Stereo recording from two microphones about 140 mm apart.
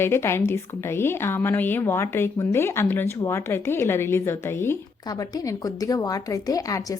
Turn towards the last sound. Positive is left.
turn(degrees=25)  # may be behind; listen again after turning